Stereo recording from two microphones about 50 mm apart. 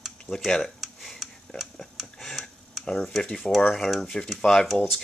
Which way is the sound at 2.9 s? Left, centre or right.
Centre.